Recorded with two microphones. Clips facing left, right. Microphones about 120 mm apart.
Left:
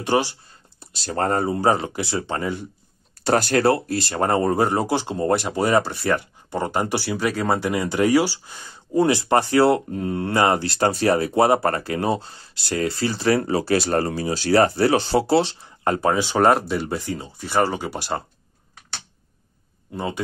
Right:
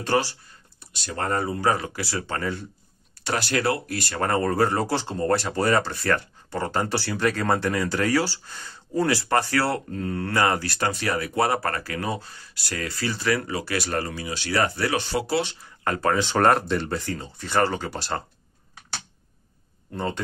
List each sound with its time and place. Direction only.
0.0 s speech: 20° left (ahead or behind)
0.7 s speech: 35° left (ahead or behind); by 2.6 s 20° left (ahead or behind)
3.3 s speech: 45° left (ahead or behind); by 18.2 s 15° left (ahead or behind)
19.9 s speech: 10° left (ahead or behind)